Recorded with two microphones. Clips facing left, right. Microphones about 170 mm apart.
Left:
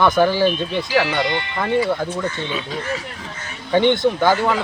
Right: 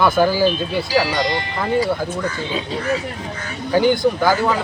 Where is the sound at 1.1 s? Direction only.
35° right (ahead or behind).